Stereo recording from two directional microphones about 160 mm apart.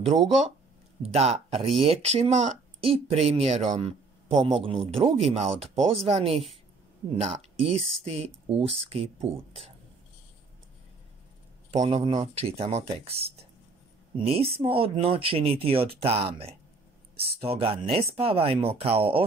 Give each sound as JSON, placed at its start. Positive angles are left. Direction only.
{"t": 1.0, "sound": "speech", "side_deg": -40}
{"t": 4.5, "sound": "speech", "side_deg": -35}
{"t": 11.9, "sound": "speech", "side_deg": -40}